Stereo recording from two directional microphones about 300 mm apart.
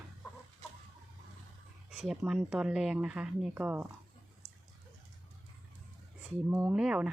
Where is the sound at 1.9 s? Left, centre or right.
Centre.